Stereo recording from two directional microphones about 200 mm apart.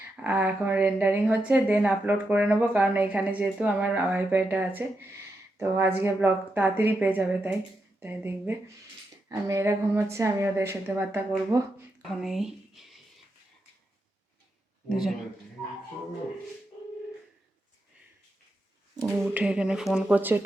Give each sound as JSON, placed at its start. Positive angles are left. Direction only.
{"t": 0.2, "sound": "a woman's voice", "side_deg": -10}
{"t": 12.2, "sound": "a sound", "side_deg": 0}
{"t": 14.8, "sound": "speech", "side_deg": 0}
{"t": 18.9, "sound": "a woman's voice", "side_deg": -15}